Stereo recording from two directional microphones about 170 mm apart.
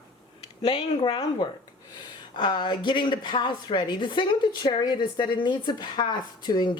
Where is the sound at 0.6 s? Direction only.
35° left (ahead or behind).